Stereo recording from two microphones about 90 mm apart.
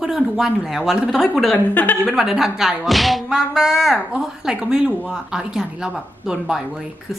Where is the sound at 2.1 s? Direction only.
5° right (ahead or behind).